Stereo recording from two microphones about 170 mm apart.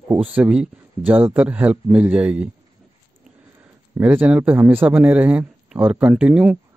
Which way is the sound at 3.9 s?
10° right (ahead or behind).